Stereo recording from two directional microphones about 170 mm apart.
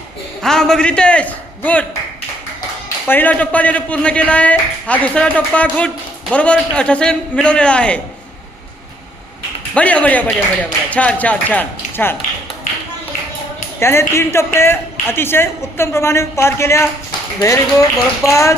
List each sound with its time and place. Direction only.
0.4 s a man's voice: 5° left (ahead or behind)
3.1 s a man's voice: 10° left (ahead or behind)
9.7 s a man's voice: 10° left (ahead or behind)
13.7 s a man's voice: 15° left (ahead or behind)